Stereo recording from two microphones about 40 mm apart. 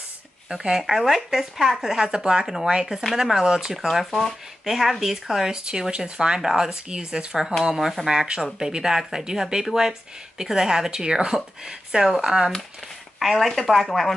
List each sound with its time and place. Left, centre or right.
0.5 s speech: centre
3.7 s speech: centre
4.6 s speech: centre
5.5 s speech: centre
7.7 s speech: centre
8.1 s speech: centre
13.2 s speech: centre